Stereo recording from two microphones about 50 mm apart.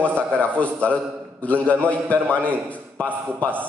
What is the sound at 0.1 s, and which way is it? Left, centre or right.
A man's voice, left.